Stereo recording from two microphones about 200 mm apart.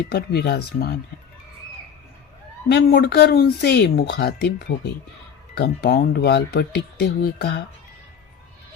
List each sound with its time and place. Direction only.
0.0 s speech: 50° left (ahead or behind)
2.6 s speech: 50° left (ahead or behind)